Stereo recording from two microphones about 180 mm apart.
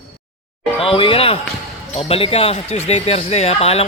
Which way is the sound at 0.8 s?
30° left (ahead or behind).